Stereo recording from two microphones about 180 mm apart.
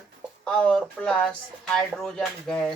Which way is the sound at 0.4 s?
5° left (ahead or behind).